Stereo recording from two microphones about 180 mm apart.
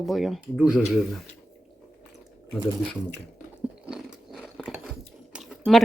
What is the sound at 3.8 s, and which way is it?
Biting, centre (ahead or behind).